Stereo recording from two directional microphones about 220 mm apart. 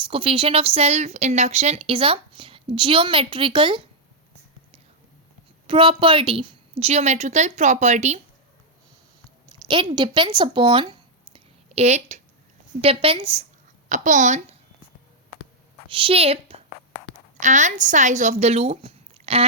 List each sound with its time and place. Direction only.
0.0 s a woman's voice: 25° right (ahead or behind)
5.6 s a woman's voice: 25° right (ahead or behind)
9.6 s a woman's voice: 20° right (ahead or behind)
15.9 s a woman's voice: 25° right (ahead or behind)